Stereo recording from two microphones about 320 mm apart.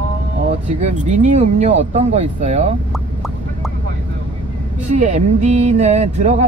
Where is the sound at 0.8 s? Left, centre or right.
Right.